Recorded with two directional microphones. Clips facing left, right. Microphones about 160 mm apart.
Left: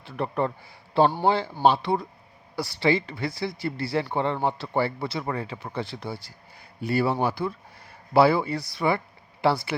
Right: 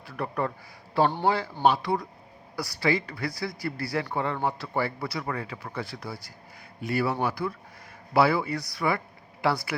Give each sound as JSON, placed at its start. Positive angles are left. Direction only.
{"t": 0.0, "sound": "speech", "side_deg": 25}